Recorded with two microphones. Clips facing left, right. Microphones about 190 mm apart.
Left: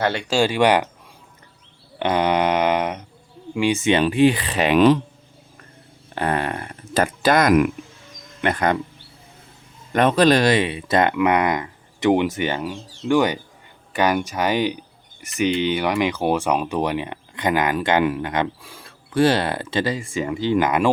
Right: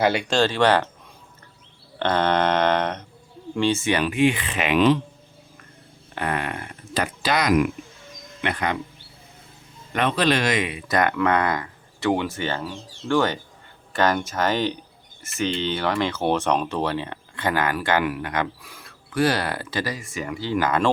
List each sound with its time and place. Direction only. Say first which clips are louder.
0.0 s speech: right 2 dB; 5° right (ahead or behind)
0.3 s speech: left 6 dB; 10° left (ahead or behind)
2.0 s a sound: left 2 dB; 10° left (ahead or behind)
3.5 s speech: left 3 dB; 15° left (ahead or behind); by 4.8 s 35° left (ahead or behind)
6.1 s speech: left 4 dB; 35° left (ahead or behind)
9.9 s speech: left 6 dB; 40° left (ahead or behind); by 20.9 s 15° left (ahead or behind)